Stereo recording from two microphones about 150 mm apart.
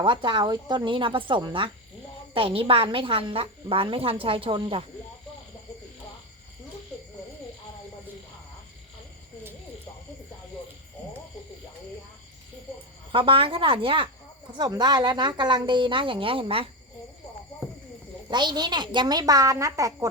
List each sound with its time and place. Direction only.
0.0 s a woman's voice: 30° right (ahead or behind)
13.1 s a woman's voice: 35° right (ahead or behind)
18.3 s a woman's voice: 30° right (ahead or behind)